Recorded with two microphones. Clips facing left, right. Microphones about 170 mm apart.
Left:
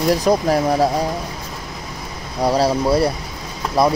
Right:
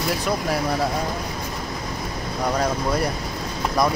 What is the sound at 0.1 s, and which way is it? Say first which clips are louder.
Speech: left 9 dB; 40° left (ahead or behind).